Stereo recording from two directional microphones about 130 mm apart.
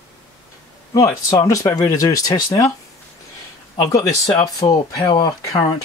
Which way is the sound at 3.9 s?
30° left (ahead or behind).